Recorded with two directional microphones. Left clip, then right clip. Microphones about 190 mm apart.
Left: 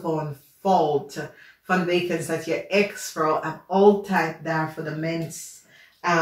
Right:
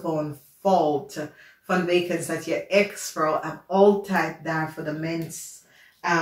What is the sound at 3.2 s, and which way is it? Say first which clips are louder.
Speech: left 1 dB; centre (ahead or behind).